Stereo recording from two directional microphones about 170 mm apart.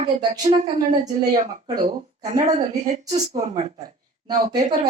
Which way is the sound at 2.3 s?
40° right (ahead or behind).